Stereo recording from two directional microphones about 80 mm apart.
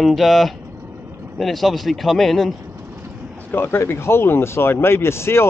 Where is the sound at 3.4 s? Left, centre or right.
Left.